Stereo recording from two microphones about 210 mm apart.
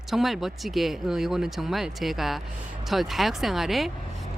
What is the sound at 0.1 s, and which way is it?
A woman's voice, centre (ahead or behind).